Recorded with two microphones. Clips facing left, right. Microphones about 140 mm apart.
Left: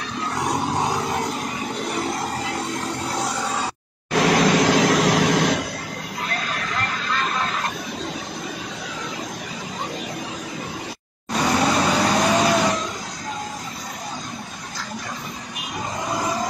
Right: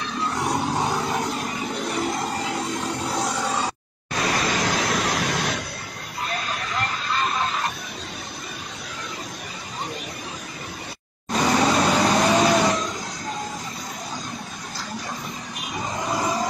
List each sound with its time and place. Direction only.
2.4 s a sound: centre (ahead or behind)
4.1 s vehicle: 90° left
11.6 s vehicle: centre (ahead or behind)